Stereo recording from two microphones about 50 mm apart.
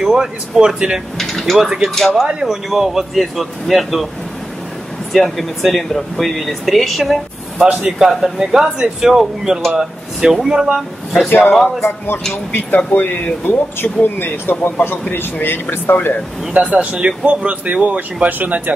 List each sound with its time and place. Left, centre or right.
0.0 s speech: centre
1.1 s speech: centre
1.4 s speech: centre
5.1 s speech: centre
7.6 s speech: right
8.0 s speech: centre
11.2 s speech: left
12.5 s speech: left
14.0 s speech: left
16.7 s speech: right